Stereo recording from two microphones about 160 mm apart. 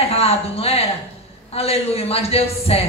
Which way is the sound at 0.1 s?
40° left (ahead or behind).